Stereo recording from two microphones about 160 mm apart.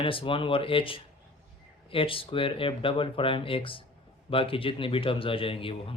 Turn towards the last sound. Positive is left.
turn(degrees=35)  # may be behind; listen again after turning